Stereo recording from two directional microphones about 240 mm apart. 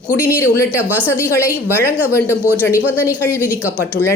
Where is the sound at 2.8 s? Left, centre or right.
Centre.